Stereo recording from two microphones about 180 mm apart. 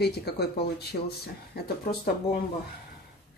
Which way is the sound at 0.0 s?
65° left (ahead or behind).